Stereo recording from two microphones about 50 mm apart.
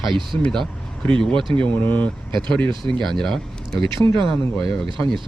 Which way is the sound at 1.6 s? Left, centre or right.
Left.